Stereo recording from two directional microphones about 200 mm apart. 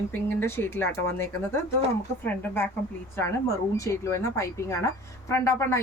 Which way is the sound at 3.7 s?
15° left (ahead or behind).